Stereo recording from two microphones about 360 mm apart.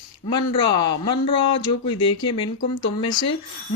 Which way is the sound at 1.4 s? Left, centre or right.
Left.